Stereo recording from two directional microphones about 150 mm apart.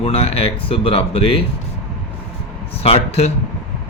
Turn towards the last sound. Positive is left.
turn(degrees=40)  # may be behind; listen again after turning